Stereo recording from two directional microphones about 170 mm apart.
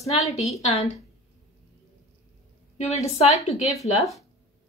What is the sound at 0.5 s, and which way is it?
Speech, 45° left (ahead or behind).